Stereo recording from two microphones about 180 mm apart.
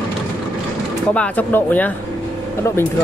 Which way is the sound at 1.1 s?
10° left (ahead or behind).